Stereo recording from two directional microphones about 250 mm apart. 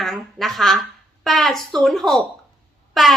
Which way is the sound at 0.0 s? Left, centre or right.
Centre.